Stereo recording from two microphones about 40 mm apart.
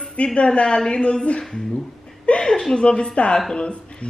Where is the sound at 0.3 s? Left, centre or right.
Left.